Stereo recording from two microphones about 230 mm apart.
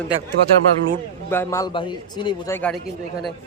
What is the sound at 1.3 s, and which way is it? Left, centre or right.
A man's voice, centre.